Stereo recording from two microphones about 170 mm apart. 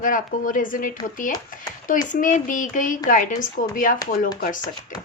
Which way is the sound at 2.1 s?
50° left (ahead or behind).